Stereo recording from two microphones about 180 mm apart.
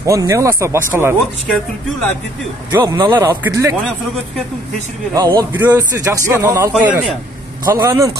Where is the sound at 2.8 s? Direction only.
25° right (ahead or behind).